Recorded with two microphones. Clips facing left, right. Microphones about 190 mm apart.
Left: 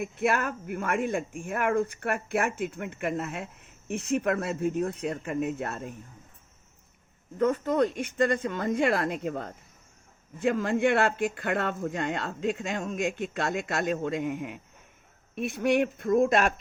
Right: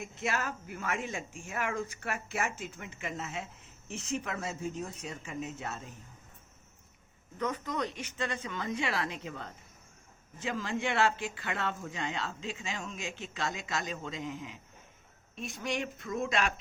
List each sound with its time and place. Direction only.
0.0 s a woman's voice: 60° left (ahead or behind)
7.3 s a woman's voice: 50° left (ahead or behind)